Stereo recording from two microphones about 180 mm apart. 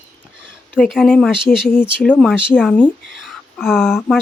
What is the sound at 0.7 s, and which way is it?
Speech, 5° left (ahead or behind).